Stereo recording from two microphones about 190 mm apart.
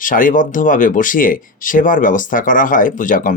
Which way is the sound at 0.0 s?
45° left (ahead or behind).